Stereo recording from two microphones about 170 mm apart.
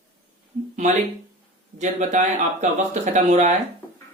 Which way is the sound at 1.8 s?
45° right (ahead or behind).